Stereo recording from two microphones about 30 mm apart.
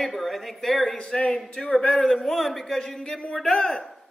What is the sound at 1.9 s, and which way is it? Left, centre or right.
A woman's voice, centre.